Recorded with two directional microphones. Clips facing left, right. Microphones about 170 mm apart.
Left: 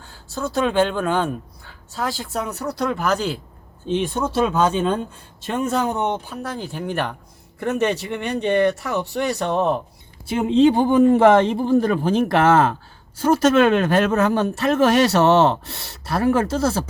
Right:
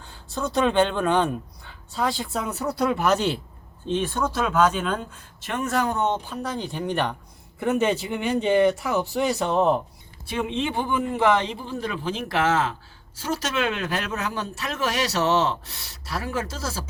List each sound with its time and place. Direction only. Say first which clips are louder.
0.0 s speech: left 2 dB; centre (ahead or behind)
3.8 s speech: left 3 dB; 15° left (ahead or behind)
6.3 s speech: left 1 dB; 5° left (ahead or behind)
10.3 s a man's voice: left 11 dB; 40° left (ahead or behind); by 16.8 s 60° left (ahead or behind)